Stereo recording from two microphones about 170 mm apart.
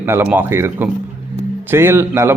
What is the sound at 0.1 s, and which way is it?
Speech, 15° right (ahead or behind).